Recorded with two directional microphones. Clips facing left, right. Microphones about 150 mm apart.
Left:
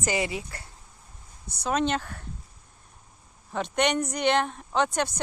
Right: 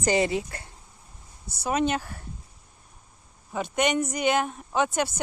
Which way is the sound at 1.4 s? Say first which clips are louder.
Right 1 dB; 5° right (ahead or behind).